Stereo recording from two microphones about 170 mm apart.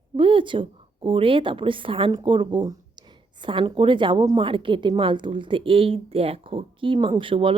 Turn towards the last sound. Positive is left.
turn(degrees=-30)  # may be behind; listen again after turning